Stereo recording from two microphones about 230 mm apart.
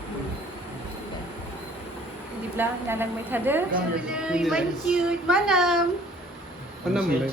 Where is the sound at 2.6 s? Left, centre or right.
Centre.